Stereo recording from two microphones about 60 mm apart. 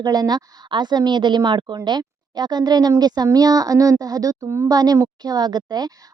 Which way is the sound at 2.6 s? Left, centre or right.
Right.